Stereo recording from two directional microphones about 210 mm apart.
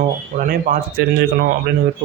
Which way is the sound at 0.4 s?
45° right (ahead or behind).